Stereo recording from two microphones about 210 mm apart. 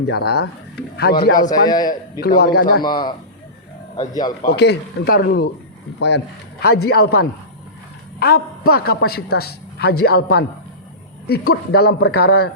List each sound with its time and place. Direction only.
0.1 s a man's voice: 50° left (ahead or behind)
1.5 s a man's voice: 20° left (ahead or behind)
2.2 s a man's voice: 45° left (ahead or behind)
2.8 s a man's voice: 20° left (ahead or behind)
4.4 s a man's voice: 55° left (ahead or behind)